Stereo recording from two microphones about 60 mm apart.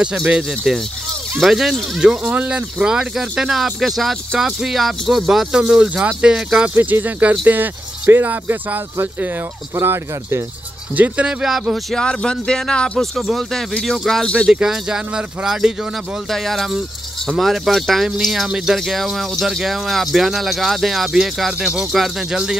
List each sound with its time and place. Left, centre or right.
0.7 s speech: centre
2.2 s speech: right
6.7 s speech: right
9.8 s speech: right
11.0 s speech: right
11.4 s speech: centre
11.9 s speech: centre
13.0 s speech: centre
14.5 s speech: centre
16.3 s speech: centre